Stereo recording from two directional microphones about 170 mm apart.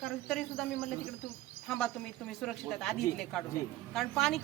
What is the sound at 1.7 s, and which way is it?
A woman's voice, 5° left (ahead or behind).